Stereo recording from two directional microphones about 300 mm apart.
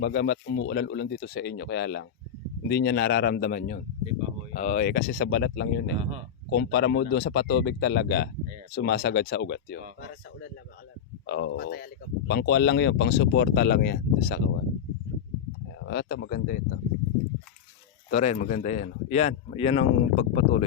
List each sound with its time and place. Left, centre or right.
0.0 s speech: left
6.0 s speech: right
6.5 s speech: left
11.3 s speech: left
15.9 s speech: left
18.1 s speech: left